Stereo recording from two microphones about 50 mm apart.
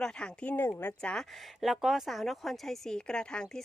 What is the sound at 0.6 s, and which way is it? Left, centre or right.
Speech, left.